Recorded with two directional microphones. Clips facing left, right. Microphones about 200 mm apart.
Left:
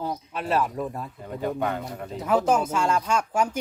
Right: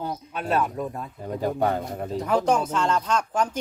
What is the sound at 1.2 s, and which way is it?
Speech, 35° right (ahead or behind).